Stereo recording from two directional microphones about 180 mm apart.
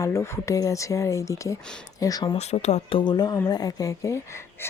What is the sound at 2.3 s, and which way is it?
A woman's voice, 35° left (ahead or behind).